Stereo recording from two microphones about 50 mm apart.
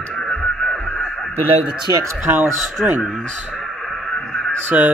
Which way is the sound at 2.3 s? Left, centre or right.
Right.